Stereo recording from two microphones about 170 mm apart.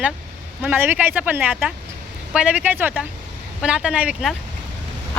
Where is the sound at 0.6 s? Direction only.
10° right (ahead or behind).